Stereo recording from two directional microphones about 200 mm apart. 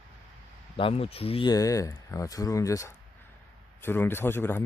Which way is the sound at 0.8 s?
30° left (ahead or behind).